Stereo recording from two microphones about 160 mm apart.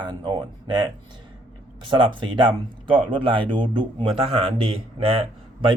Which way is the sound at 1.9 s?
30° right (ahead or behind).